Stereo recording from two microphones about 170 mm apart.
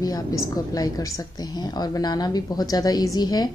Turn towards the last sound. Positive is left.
turn(degrees=25)  # may be behind; listen again after turning